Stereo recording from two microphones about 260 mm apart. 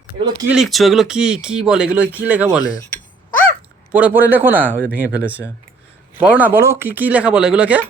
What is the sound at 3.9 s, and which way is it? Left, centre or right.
Speech, centre.